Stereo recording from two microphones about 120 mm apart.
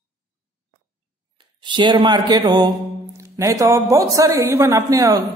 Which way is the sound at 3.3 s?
25° right (ahead or behind).